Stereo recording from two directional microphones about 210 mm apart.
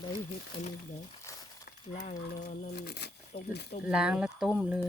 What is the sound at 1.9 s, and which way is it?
Speech, 35° left (ahead or behind).